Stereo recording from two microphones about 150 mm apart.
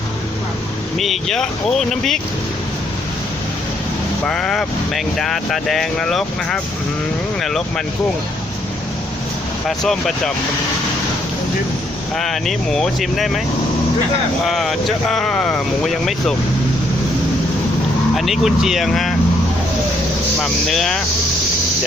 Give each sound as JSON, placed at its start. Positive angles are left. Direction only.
{"t": 0.9, "sound": "speech", "side_deg": 0}
{"t": 4.3, "sound": "speech", "side_deg": 5}
{"t": 9.6, "sound": "speech", "side_deg": 5}
{"t": 12.1, "sound": "speech", "side_deg": 0}
{"t": 14.4, "sound": "speech", "side_deg": 0}
{"t": 18.1, "sound": "speech", "side_deg": 0}
{"t": 20.4, "sound": "speech", "side_deg": 0}